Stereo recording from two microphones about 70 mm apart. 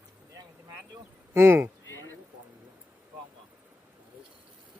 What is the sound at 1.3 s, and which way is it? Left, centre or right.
Speech, right.